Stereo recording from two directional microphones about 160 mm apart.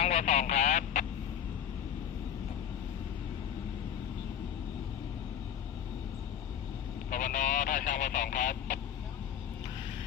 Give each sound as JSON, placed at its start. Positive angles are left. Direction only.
{"t": 0.0, "sound": "vehicle", "side_deg": 45}
{"t": 7.1, "sound": "vehicle", "side_deg": 55}